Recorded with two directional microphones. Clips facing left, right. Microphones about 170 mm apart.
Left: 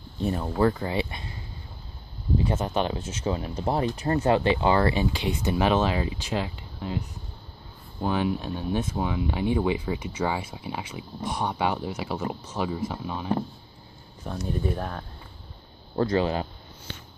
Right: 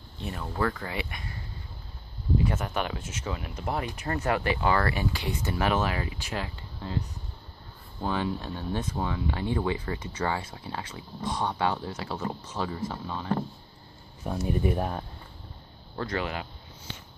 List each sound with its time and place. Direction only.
0.2 s speech: 30° left (ahead or behind); by 13.4 s 15° left (ahead or behind)
14.2 s speech: 5° right (ahead or behind)
16.0 s speech: 30° left (ahead or behind)